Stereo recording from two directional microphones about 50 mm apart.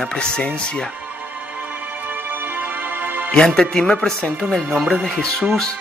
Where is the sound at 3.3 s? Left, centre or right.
Centre.